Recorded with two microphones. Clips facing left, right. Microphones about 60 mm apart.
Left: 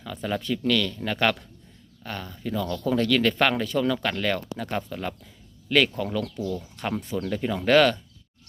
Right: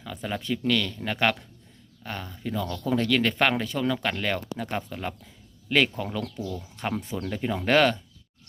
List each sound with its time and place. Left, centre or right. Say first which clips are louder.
0.0 s speech: left 3 dB; centre
5.6 s speech: left 2 dB; right